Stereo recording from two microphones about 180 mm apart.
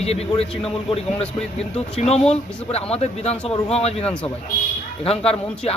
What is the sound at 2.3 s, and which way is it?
A man's voice, 35° left (ahead or behind).